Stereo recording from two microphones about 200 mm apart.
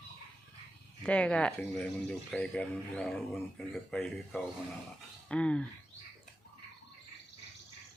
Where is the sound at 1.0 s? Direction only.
5° left (ahead or behind).